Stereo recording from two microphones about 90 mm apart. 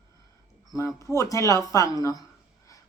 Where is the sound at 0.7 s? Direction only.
35° left (ahead or behind).